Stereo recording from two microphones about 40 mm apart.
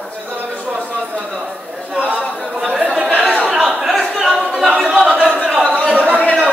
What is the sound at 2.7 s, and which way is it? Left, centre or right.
Chatter, right.